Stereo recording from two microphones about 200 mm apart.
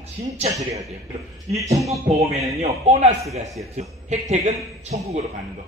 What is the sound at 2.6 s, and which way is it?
A man's voice, 30° right (ahead or behind).